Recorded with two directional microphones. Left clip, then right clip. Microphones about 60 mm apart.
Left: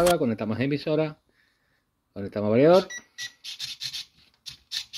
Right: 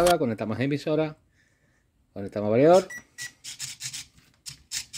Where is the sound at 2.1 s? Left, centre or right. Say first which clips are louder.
Even; right.